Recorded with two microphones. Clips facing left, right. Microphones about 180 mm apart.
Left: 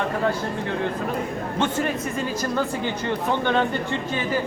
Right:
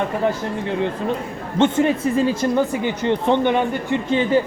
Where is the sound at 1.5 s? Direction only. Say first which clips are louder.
Right 8 dB; 25° right (ahead or behind).